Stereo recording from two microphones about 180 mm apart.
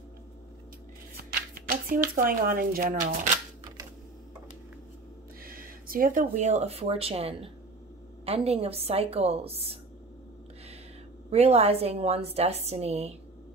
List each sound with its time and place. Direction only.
1.1 s shuffling cards: 55° right (ahead or behind)
5.4 s a woman's voice: 55° right (ahead or behind); by 9.8 s 35° right (ahead or behind)
11.2 s a woman's voice: 35° right (ahead or behind)